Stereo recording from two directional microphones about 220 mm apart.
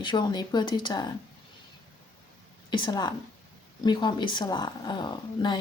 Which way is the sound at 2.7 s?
20° left (ahead or behind).